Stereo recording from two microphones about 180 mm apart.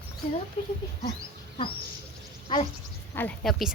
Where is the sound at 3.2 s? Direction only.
10° left (ahead or behind).